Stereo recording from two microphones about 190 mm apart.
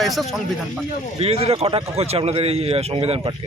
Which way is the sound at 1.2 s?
30° right (ahead or behind).